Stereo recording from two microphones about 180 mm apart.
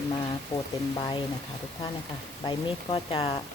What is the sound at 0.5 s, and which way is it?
Speech, 15° left (ahead or behind).